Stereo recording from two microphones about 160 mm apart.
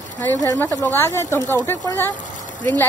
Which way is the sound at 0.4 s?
20° left (ahead or behind).